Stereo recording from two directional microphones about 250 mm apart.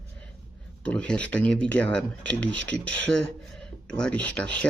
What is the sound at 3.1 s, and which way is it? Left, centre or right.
Speech, centre.